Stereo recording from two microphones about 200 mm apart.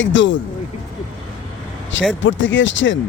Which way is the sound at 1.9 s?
70° left (ahead or behind).